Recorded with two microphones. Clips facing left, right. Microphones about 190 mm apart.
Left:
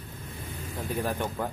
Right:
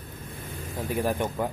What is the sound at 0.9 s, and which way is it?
Speech, 15° right (ahead or behind).